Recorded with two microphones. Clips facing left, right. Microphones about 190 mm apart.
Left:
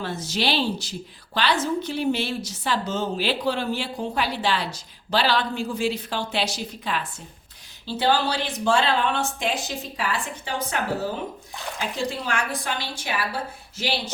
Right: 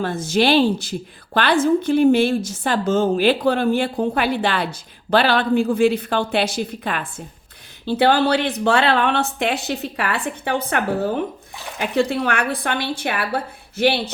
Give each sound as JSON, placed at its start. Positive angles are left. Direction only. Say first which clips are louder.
{"t": 0.0, "sound": "a woman's voice", "louder": "right 8 dB", "side_deg": -50}